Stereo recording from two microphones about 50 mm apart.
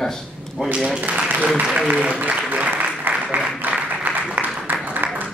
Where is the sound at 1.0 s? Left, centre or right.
Right.